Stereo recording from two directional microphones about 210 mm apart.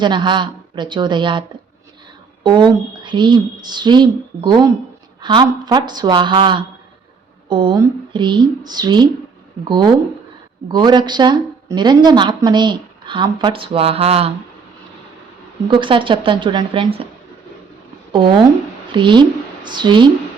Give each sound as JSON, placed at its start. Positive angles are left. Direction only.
{"t": 0.0, "sound": "speech", "side_deg": -20}
{"t": 15.7, "sound": "speech", "side_deg": -25}
{"t": 18.9, "sound": "a woman's voice", "side_deg": -25}